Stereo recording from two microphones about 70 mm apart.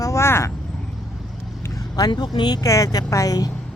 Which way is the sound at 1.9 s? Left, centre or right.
Left.